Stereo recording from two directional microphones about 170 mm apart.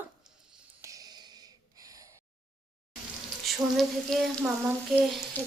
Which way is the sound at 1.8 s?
20° right (ahead or behind).